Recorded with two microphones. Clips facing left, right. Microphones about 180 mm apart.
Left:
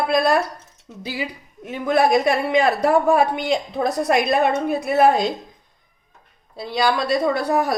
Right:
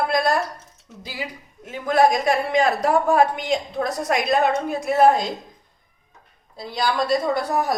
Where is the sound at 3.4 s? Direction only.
65° left (ahead or behind).